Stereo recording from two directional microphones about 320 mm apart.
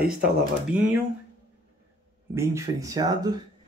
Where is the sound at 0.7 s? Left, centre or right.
Centre.